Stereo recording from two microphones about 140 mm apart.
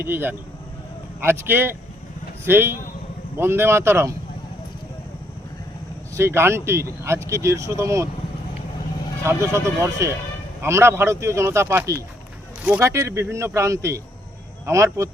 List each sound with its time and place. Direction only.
0.0 s speech: 15° right (ahead or behind)
6.1 s speech: 15° right (ahead or behind)
9.2 s speech: 20° right (ahead or behind)